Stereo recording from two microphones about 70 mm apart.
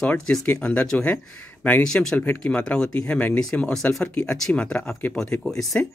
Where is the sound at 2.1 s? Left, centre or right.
Left.